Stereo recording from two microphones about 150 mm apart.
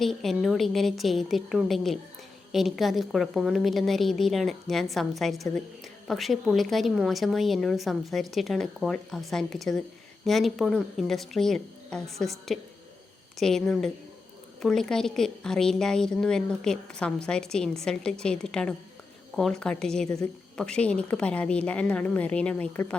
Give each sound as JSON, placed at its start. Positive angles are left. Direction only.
{"t": 0.0, "sound": "a woman's voice", "side_deg": 0}